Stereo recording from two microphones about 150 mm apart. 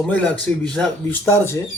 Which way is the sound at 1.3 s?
15° left (ahead or behind).